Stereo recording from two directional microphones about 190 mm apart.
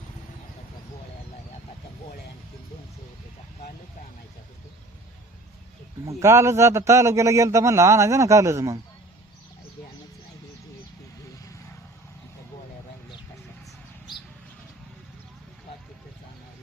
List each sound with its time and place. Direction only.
6.1 s a man's voice: 15° right (ahead or behind)